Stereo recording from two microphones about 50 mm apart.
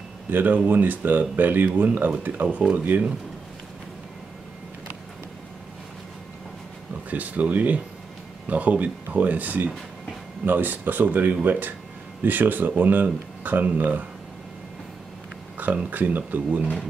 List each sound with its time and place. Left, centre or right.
0.3 s speech: right
7.1 s speech: right
15.5 s speech: right